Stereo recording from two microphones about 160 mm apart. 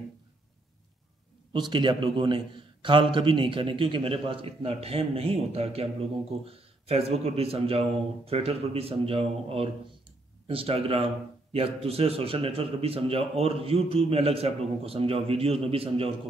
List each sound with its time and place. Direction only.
1.5 s a man's voice: 30° right (ahead or behind)